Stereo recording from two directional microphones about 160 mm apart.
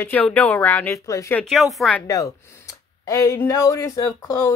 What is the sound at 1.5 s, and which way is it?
Speech, centre (ahead or behind).